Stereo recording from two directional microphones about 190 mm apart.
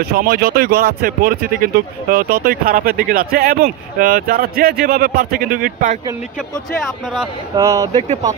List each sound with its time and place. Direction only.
0.0 s speech: 55° right (ahead or behind)
7.5 s speech: 15° right (ahead or behind)